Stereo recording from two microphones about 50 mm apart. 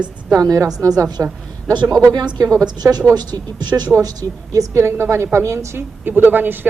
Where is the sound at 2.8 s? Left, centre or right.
Right.